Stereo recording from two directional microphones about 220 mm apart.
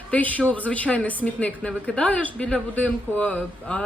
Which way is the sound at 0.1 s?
5° left (ahead or behind).